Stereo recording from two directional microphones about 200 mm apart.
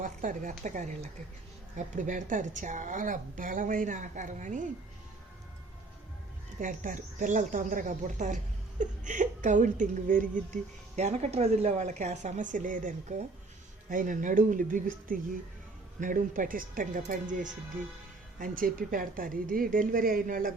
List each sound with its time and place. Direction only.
0.0 s a woman's voice: 40° right (ahead or behind)
6.6 s a woman's voice: 40° right (ahead or behind)